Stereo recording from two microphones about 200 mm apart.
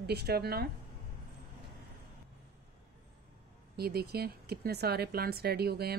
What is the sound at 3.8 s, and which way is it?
Speech, 50° right (ahead or behind).